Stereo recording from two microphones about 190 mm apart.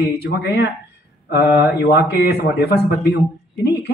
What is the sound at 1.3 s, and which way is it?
A man's voice, 60° left (ahead or behind).